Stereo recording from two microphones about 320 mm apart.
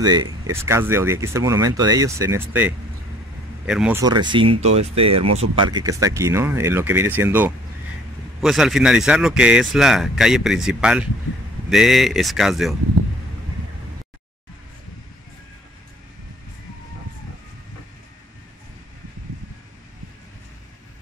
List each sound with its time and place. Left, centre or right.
0.0 s speech: centre
5.1 s speech: right
5.4 s speech: centre